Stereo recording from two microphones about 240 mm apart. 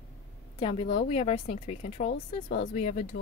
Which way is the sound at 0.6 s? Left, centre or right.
Left.